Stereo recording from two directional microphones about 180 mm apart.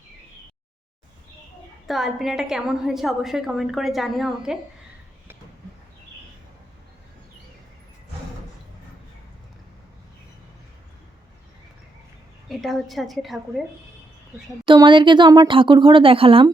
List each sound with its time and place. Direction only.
1.9 s a woman's voice: centre (ahead or behind)
12.5 s a woman's voice: centre (ahead or behind)
14.6 s speech: 25° right (ahead or behind)